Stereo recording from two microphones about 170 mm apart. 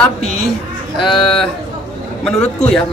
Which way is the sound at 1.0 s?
Centre (ahead or behind).